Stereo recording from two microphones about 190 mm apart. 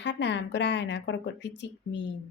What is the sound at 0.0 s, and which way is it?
Speech, 65° left (ahead or behind).